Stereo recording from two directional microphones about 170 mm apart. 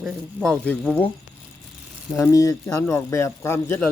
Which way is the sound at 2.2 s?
20° left (ahead or behind).